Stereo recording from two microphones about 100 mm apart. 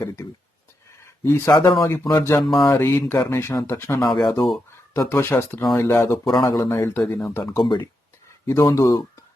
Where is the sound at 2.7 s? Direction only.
20° left (ahead or behind).